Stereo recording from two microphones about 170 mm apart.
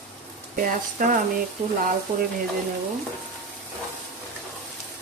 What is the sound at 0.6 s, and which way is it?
Speech, 55° right (ahead or behind).